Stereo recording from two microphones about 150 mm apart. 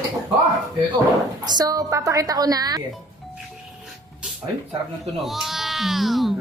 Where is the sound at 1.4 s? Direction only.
25° right (ahead or behind).